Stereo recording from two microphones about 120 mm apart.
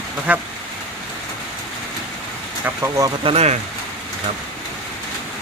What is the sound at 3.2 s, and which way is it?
Speech, 60° right (ahead or behind).